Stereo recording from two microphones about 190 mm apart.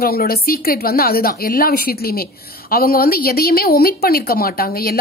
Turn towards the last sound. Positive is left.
turn(degrees=50)  # may be behind; listen again after turning